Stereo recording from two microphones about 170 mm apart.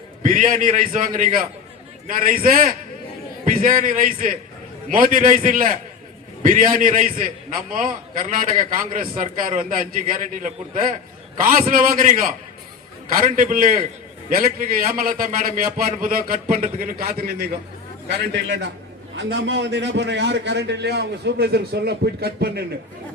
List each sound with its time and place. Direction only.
0.2 s a man's voice: 50° right (ahead or behind)
18.1 s a man's voice: 90° right; by 22.6 s 70° right (ahead or behind)